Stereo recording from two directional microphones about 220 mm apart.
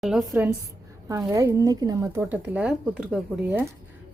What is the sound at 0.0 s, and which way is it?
A woman's voice, centre (ahead or behind).